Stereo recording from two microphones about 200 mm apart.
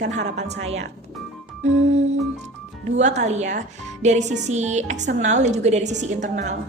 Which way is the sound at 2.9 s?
35° right (ahead or behind).